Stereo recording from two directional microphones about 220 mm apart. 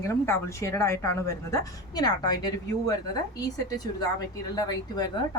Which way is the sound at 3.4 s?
15° left (ahead or behind).